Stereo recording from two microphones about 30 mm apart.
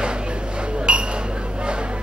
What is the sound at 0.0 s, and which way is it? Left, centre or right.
Chink, right.